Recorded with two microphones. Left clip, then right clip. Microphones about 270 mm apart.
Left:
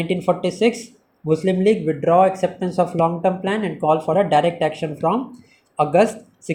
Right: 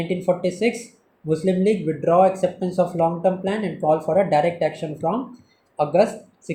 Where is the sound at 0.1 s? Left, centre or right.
Left.